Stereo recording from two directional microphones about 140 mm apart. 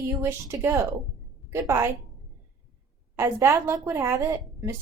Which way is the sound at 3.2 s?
20° right (ahead or behind).